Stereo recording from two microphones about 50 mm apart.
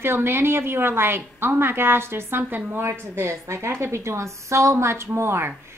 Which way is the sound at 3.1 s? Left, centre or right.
Right.